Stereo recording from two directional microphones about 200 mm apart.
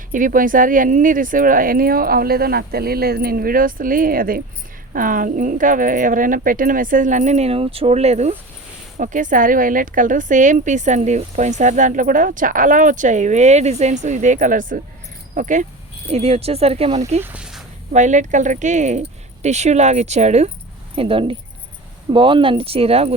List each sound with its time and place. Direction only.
0.1 s a woman's voice: 45° right (ahead or behind)
17.2 s a sound: 5° right (ahead or behind)
17.9 s a woman's voice: 35° right (ahead or behind)